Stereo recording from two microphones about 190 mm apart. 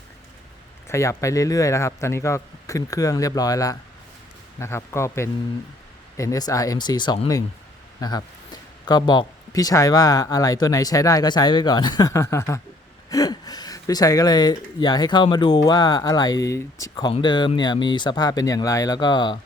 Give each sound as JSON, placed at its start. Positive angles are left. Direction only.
{"t": 0.9, "sound": "speech", "side_deg": 15}
{"t": 8.9, "sound": "speech", "side_deg": 20}